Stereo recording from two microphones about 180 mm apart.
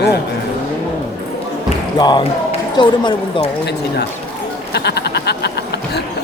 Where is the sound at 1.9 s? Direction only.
20° left (ahead or behind).